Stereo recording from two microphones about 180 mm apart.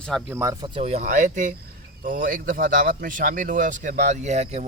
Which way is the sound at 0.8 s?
40° right (ahead or behind).